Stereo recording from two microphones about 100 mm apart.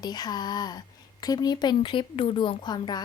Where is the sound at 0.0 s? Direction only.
40° left (ahead or behind).